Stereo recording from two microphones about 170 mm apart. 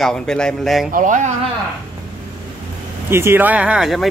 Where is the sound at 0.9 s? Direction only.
50° right (ahead or behind).